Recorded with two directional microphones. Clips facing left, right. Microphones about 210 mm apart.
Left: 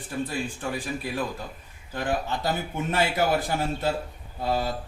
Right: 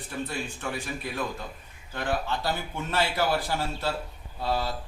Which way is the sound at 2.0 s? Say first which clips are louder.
Left 2 dB; 15° left (ahead or behind).